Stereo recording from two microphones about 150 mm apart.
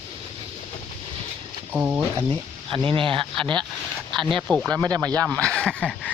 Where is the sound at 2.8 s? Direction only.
35° right (ahead or behind).